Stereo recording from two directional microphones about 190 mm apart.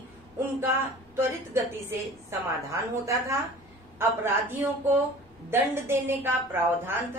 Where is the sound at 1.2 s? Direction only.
15° right (ahead or behind).